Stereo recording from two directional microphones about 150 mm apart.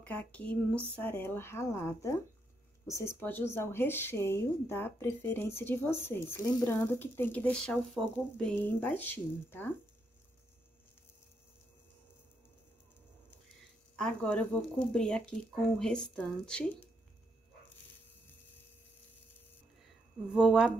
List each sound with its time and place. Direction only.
0.0 s speech: 10° left (ahead or behind)
13.9 s speech: 5° left (ahead or behind)
20.3 s speech: 5° right (ahead or behind)